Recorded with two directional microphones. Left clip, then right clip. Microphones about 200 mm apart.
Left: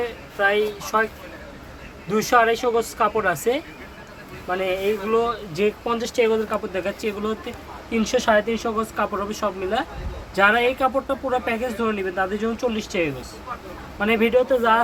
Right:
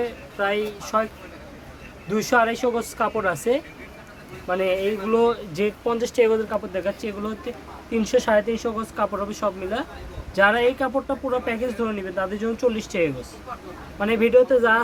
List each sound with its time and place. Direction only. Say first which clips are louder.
0.0 s a woman's voice: left 3 dB; 20° right (ahead or behind)
2.0 s speech: left 2 dB; 15° right (ahead or behind)
4.4 s speech: even; 30° right (ahead or behind)
5.6 s speech: left 1 dB; 20° right (ahead or behind)
6.5 s speech: even; centre (ahead or behind)